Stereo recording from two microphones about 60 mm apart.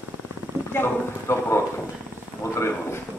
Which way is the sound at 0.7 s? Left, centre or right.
Left.